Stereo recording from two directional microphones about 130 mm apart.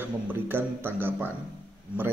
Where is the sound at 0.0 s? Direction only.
15° right (ahead or behind).